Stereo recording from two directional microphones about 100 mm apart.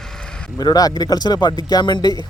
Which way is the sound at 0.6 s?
40° left (ahead or behind).